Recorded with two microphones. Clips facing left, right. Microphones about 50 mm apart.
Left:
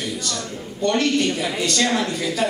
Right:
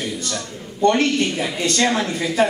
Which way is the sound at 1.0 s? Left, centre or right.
Right.